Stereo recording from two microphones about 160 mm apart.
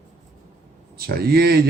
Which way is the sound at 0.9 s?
75° right (ahead or behind).